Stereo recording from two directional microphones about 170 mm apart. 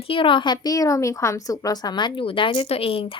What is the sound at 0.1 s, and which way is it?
A woman's voice, 30° left (ahead or behind).